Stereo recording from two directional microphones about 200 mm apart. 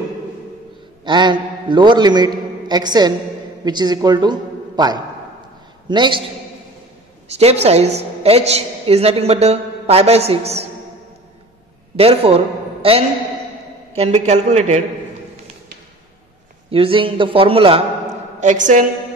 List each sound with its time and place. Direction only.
1.0 s a man's voice: 20° right (ahead or behind)
7.2 s a woman's voice: 30° right (ahead or behind)
12.0 s a man's voice: 30° right (ahead or behind)
13.9 s a woman's voice: 30° right (ahead or behind)
16.7 s a man's voice: 25° right (ahead or behind)